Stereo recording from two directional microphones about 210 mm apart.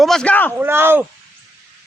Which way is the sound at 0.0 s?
5° left (ahead or behind).